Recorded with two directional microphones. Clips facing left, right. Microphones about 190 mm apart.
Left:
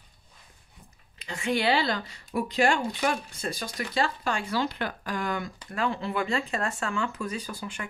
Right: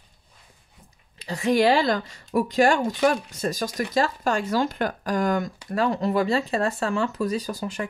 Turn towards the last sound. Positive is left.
turn(degrees=-40)  # may be behind; listen again after turning